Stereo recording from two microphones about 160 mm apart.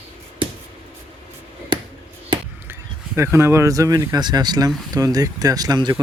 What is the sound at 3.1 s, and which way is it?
Speech, 15° right (ahead or behind).